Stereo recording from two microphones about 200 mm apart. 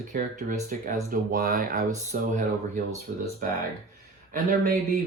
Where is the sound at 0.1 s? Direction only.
45° right (ahead or behind).